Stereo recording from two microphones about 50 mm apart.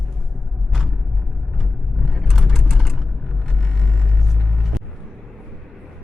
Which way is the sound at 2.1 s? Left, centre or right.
Centre.